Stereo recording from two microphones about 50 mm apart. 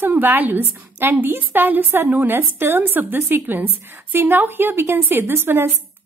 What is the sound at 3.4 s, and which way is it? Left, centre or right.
A woman's voice, right.